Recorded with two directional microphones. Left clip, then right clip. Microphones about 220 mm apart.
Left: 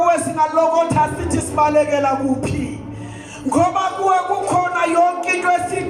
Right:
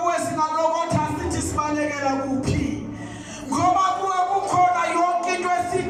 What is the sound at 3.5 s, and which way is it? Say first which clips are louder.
Music: left 2 dB; 50° left (ahead or behind).